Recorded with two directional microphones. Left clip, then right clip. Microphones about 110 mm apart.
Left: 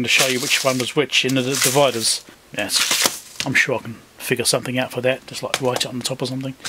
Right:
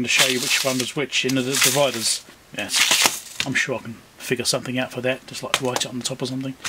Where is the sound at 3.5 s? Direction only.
35° left (ahead or behind).